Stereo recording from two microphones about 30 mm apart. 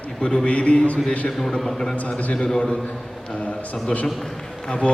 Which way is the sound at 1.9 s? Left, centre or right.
Left.